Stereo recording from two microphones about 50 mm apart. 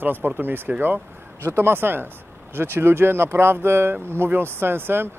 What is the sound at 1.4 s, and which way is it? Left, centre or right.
Speech, right.